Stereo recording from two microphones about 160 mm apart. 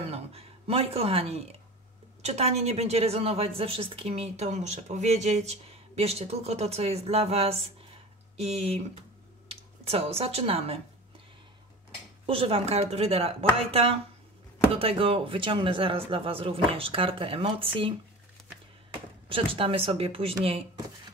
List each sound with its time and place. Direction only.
0.1 s a woman's voice: 40° right (ahead or behind)
12.3 s a woman's voice: 35° right (ahead or behind)